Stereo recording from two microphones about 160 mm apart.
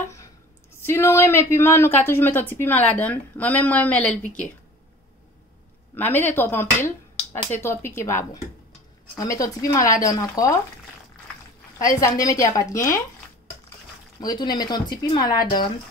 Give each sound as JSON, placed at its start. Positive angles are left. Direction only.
{"t": 0.8, "sound": "speech", "side_deg": 15}
{"t": 5.9, "sound": "speech", "side_deg": 10}
{"t": 9.2, "sound": "speech", "side_deg": 20}
{"t": 11.8, "sound": "speech", "side_deg": 20}
{"t": 14.2, "sound": "speech", "side_deg": 25}